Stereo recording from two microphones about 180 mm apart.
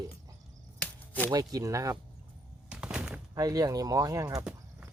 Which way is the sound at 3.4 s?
20° right (ahead or behind).